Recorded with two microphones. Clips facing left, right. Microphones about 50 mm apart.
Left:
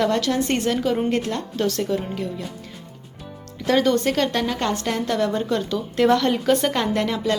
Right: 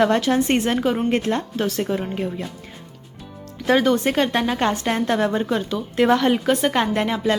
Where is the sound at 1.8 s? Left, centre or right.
Right.